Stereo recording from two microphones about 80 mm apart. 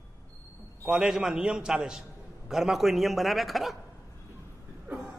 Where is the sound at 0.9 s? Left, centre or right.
Centre.